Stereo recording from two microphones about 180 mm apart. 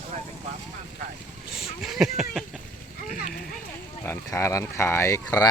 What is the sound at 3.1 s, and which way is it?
Clip-clop, 50° left (ahead or behind).